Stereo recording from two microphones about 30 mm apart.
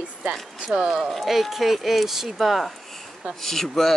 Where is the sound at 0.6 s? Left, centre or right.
Right.